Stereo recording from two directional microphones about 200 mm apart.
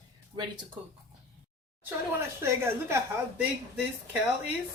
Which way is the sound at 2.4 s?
10° right (ahead or behind).